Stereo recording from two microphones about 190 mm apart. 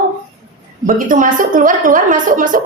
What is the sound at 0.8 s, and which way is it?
A woman's voice, 45° right (ahead or behind).